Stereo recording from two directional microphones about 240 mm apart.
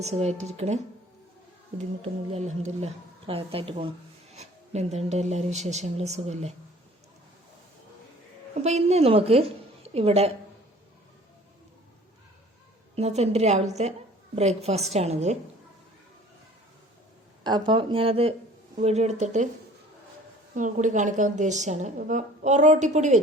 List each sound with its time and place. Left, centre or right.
0.0 s a woman's voice: right
2.3 s a woman's voice: right
8.6 s a woman's voice: right
13.0 s a woman's voice: right
17.4 s a woman's voice: centre
20.6 s a woman's voice: right